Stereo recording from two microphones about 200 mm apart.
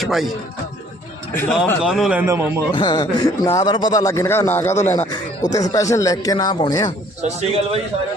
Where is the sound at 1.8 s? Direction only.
5° right (ahead or behind).